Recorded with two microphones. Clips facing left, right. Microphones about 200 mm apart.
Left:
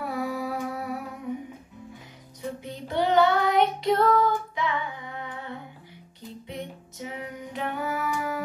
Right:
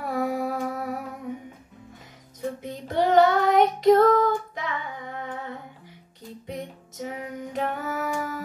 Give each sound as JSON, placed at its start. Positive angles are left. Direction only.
{"t": 0.1, "sound": "humming", "side_deg": -50}
{"t": 2.6, "sound": "child singing", "side_deg": -45}
{"t": 6.4, "sound": "music", "side_deg": -45}